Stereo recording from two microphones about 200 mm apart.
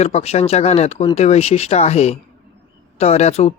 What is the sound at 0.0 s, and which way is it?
Speech, 30° left (ahead or behind).